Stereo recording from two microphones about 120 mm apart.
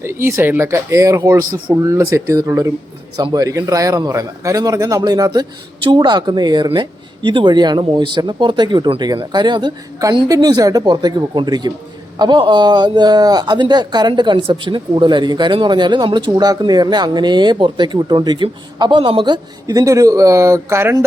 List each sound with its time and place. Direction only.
0.0 s a man's voice: 20° right (ahead or behind)